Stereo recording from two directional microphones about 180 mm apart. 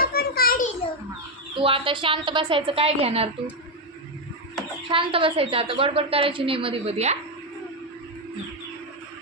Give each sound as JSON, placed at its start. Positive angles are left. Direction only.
{"t": 0.0, "sound": "a sound", "side_deg": 60}
{"t": 1.5, "sound": "a woman's voice", "side_deg": -30}
{"t": 4.9, "sound": "a woman's voice", "side_deg": -30}